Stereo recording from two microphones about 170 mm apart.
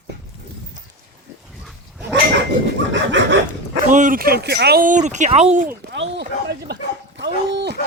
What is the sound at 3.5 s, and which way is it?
Speech, 50° right (ahead or behind).